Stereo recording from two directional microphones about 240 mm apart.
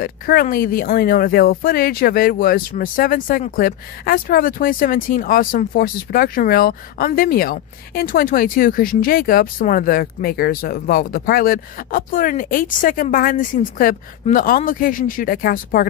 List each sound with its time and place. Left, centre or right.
0.0 s speech: left